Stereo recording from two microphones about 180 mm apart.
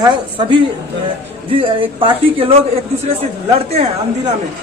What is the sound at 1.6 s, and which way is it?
A woman's voice, 30° right (ahead or behind).